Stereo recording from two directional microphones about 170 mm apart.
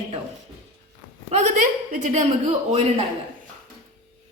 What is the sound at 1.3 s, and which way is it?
Speech, 45° right (ahead or behind).